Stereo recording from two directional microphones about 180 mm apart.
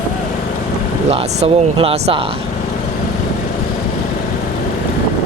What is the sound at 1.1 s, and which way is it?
Speech, 30° right (ahead or behind).